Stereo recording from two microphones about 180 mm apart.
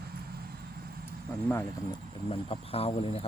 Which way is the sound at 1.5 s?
15° left (ahead or behind).